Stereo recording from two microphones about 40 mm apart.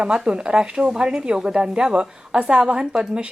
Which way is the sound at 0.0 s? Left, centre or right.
Right.